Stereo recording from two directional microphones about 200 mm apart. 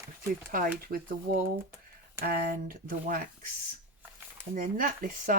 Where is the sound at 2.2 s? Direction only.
45° right (ahead or behind).